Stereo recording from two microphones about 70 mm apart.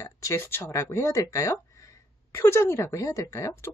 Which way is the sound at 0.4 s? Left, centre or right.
Left.